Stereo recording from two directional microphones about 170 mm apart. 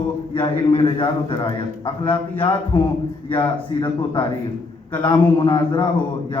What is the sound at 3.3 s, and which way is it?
A man's voice, 30° left (ahead or behind).